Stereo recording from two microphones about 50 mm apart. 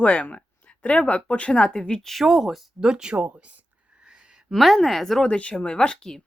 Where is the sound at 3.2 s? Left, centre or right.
Right.